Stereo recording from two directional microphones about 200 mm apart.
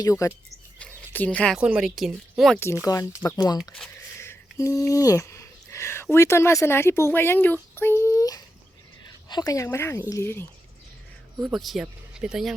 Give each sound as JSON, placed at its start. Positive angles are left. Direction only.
{"t": 0.0, "sound": "a woman's voice", "side_deg": 15}
{"t": 0.8, "sound": "a sound", "side_deg": 10}
{"t": 1.5, "sound": "speech", "side_deg": -5}
{"t": 2.8, "sound": "a woman's voice", "side_deg": 15}
{"t": 3.7, "sound": "a sound", "side_deg": 10}
{"t": 9.3, "sound": "a woman's voice", "side_deg": 20}
{"t": 11.3, "sound": "speech", "side_deg": 0}